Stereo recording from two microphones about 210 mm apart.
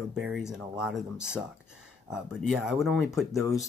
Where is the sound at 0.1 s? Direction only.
Centre (ahead or behind).